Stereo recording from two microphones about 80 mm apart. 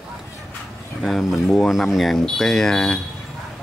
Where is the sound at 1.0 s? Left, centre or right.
Centre.